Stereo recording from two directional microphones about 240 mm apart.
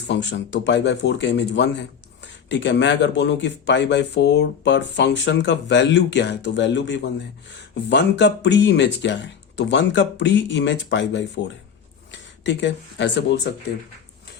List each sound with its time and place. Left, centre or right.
0.1 s speech: left